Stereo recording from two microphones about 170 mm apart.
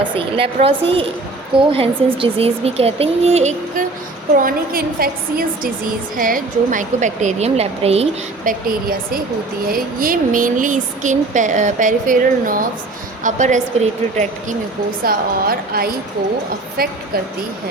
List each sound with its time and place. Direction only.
0.0 s speech: 30° right (ahead or behind)
4.4 s a woman's voice: 55° right (ahead or behind); by 8.0 s 35° right (ahead or behind)
8.5 s speech: 50° right (ahead or behind)
9.6 s speech: 60° right (ahead or behind)
15.0 s a woman's voice: 60° right (ahead or behind)